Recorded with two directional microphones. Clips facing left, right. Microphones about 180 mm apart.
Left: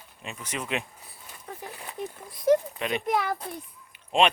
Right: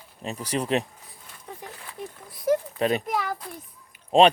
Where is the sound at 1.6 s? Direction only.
20° left (ahead or behind).